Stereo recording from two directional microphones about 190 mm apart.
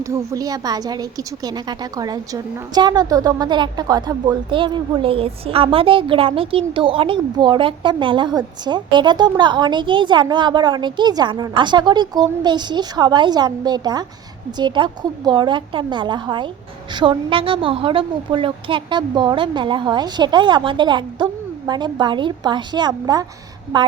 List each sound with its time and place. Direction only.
0.0 s a woman's voice: 15° right (ahead or behind)